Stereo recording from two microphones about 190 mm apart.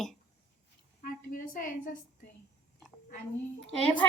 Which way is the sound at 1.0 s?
45° left (ahead or behind).